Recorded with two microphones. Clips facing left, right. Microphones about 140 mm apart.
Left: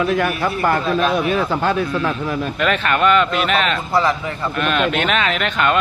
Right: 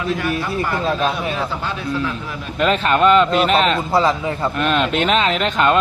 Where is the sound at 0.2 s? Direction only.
60° left (ahead or behind).